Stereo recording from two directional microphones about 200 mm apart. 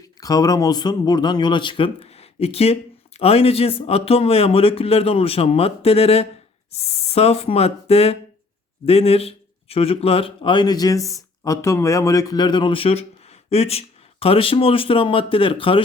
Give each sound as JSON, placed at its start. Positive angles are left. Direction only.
{"t": 0.2, "sound": "speech", "side_deg": 20}